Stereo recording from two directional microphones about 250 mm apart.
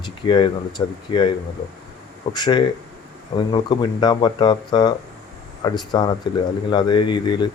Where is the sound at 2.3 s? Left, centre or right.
Centre.